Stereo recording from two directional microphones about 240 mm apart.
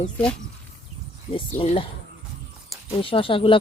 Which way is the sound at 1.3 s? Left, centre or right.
Left.